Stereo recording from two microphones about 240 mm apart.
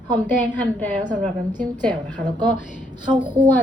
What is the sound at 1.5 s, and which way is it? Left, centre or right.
Speech, centre.